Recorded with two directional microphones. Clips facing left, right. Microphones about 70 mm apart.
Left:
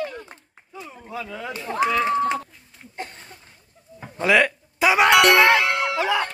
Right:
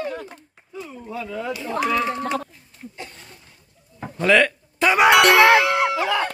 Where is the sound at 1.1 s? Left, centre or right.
Centre.